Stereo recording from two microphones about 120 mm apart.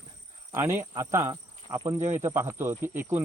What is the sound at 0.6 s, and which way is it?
Speech, 20° right (ahead or behind).